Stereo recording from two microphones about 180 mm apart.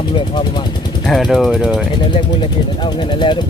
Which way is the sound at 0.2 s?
25° left (ahead or behind).